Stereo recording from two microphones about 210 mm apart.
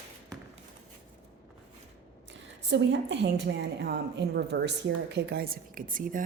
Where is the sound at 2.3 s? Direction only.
60° right (ahead or behind).